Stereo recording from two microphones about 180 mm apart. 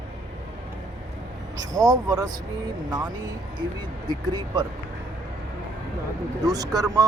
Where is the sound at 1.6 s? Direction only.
20° right (ahead or behind).